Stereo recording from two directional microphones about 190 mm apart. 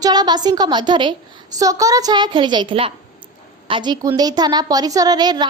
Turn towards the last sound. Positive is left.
turn(degrees=-20)  # may be behind; listen again after turning